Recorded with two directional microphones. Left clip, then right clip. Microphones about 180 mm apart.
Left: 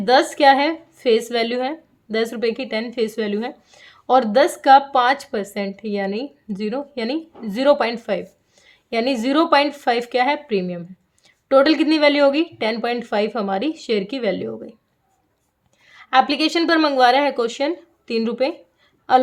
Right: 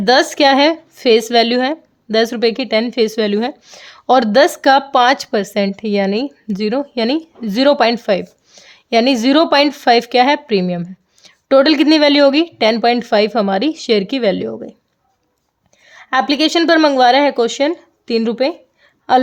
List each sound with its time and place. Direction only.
0.0 s speech: 45° right (ahead or behind)
15.9 s speech: 40° right (ahead or behind)